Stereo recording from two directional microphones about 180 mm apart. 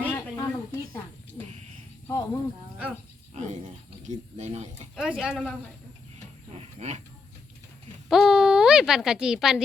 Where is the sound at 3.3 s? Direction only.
40° right (ahead or behind).